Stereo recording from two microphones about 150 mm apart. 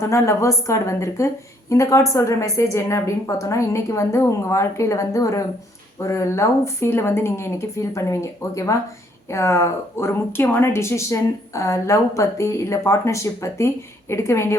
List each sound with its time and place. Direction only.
0.0 s speech: 20° left (ahead or behind)